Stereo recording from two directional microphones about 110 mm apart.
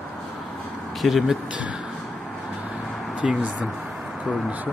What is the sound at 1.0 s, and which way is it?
Speech, centre (ahead or behind).